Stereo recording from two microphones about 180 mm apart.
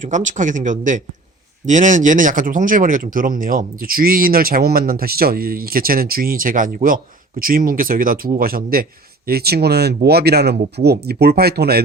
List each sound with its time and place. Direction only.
0.0 s speech: 45° right (ahead or behind); by 11.8 s 60° right (ahead or behind)